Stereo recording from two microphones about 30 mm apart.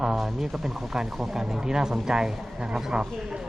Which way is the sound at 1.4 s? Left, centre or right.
Centre.